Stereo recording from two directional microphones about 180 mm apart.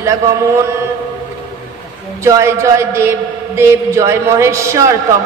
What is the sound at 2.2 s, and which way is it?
Speech, 15° right (ahead or behind).